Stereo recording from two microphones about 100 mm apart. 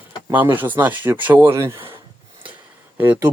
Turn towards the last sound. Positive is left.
turn(degrees=-20)  # may be behind; listen again after turning